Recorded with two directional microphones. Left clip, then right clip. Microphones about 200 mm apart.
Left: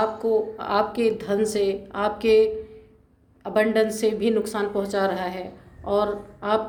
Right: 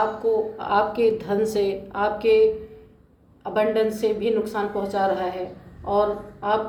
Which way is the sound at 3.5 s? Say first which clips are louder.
Even; 50° left (ahead or behind).